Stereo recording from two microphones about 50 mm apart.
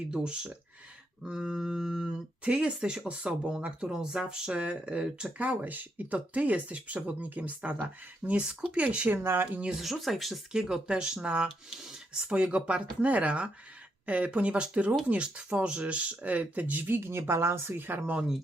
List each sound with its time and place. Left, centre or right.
0.1 s speech: centre
9.0 s speech: right
9.5 s speech: right
9.8 s speech: centre
10.5 s speech: centre
11.8 s a sound: centre
12.3 s speech: centre; by 17.0 s right
17.0 s speech: right
17.7 s speech: right